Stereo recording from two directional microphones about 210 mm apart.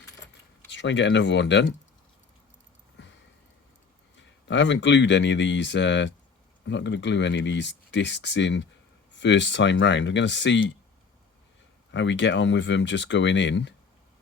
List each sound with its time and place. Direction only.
0.7 s speech: 55° left (ahead or behind)
3.0 s a sound: 55° left (ahead or behind)
4.4 s speech: 55° left (ahead or behind)
11.9 s speech: 60° left (ahead or behind)